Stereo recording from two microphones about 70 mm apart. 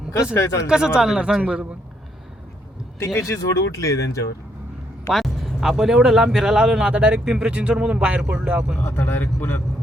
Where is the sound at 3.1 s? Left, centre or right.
Left.